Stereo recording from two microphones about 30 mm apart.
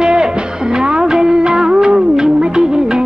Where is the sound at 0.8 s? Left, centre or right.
Right.